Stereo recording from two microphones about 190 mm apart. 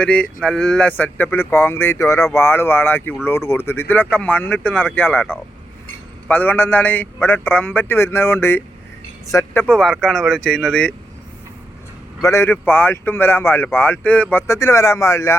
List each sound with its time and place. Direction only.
0.0 s speech: 5° left (ahead or behind)
9.6 s speech: centre (ahead or behind)
12.2 s speech: 15° left (ahead or behind)